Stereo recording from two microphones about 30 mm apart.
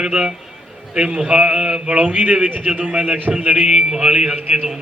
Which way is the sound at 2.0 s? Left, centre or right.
Right.